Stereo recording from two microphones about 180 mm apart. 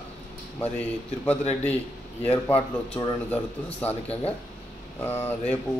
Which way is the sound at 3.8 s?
10° left (ahead or behind).